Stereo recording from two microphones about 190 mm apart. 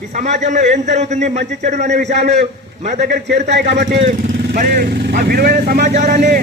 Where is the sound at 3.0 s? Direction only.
60° right (ahead or behind).